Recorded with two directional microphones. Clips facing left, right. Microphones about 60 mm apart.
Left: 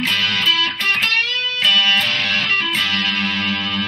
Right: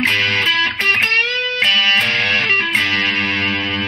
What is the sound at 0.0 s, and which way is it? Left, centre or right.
Music, right.